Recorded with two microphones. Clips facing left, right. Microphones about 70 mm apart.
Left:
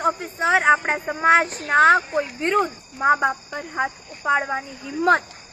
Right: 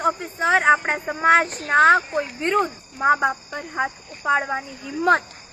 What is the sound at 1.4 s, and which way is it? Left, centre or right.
Speech, right.